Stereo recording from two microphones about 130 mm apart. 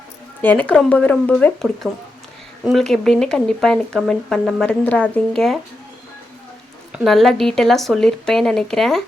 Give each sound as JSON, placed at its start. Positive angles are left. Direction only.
{"t": 0.4, "sound": "speech", "side_deg": 10}
{"t": 1.8, "sound": "speech", "side_deg": -5}
{"t": 6.9, "sound": "speech", "side_deg": 0}